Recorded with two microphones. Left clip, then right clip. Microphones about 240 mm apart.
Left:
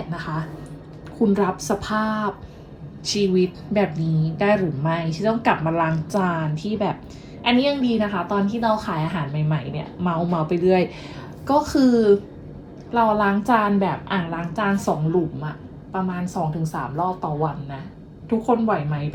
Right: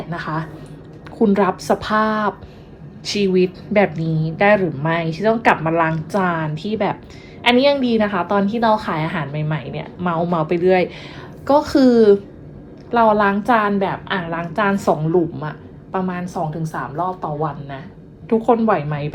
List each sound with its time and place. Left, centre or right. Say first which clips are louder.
0.1 s a woman's voice: right 5 dB; centre